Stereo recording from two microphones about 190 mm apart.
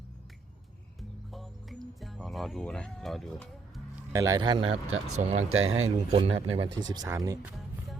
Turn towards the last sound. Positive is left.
turn(degrees=-20)  # may be behind; listen again after turning